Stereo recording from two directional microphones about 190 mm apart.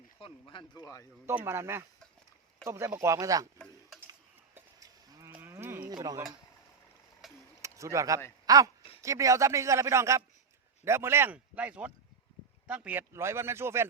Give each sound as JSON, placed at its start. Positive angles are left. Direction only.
{"t": 0.2, "sound": "speech", "side_deg": 25}
{"t": 1.3, "sound": "a man's voice", "side_deg": -15}
{"t": 3.6, "sound": "tick-tock", "side_deg": 0}
{"t": 4.5, "sound": "livestock", "side_deg": -20}
{"t": 5.3, "sound": "cattle", "side_deg": -10}
{"t": 7.2, "sound": "a sound", "side_deg": 0}
{"t": 7.6, "sound": "a man's voice", "side_deg": -15}